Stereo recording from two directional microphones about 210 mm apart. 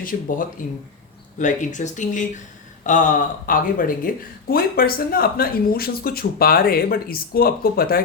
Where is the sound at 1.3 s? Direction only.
35° left (ahead or behind).